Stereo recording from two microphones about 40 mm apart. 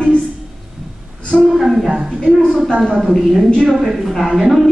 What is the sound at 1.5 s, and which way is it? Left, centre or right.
Speech, centre.